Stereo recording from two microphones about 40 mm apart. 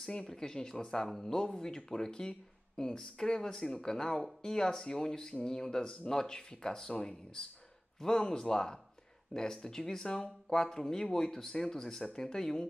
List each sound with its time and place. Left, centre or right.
0.3 s speech: centre